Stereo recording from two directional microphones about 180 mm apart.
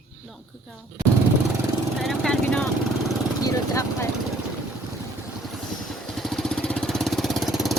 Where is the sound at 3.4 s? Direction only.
15° left (ahead or behind).